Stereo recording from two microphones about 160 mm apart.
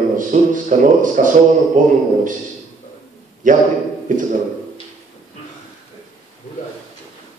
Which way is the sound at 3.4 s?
55° right (ahead or behind).